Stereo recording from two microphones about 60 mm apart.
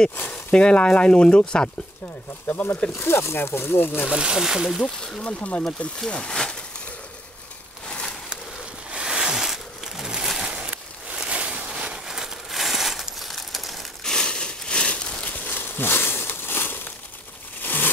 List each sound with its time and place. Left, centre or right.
0.3 s speech: centre
2.4 s speech: left
3.0 s speech: left
4.1 s speech: centre
4.8 s speech: centre
8.9 s a sound: centre
14.0 s a sound: centre
15.3 s crumpling: left
17.6 s a sound: left